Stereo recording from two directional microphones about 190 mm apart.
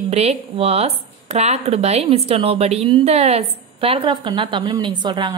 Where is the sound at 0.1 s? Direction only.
35° right (ahead or behind).